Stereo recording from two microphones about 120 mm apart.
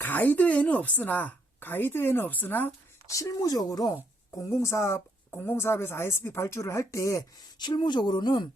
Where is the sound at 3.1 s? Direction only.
25° left (ahead or behind).